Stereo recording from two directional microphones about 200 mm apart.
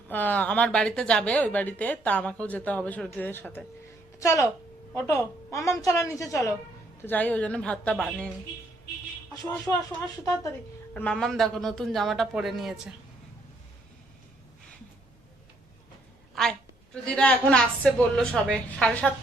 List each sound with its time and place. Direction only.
0.1 s a woman's voice: 10° left (ahead or behind)
10.9 s a woman's voice: 5° left (ahead or behind)
16.3 s a woman's voice: 5° left (ahead or behind)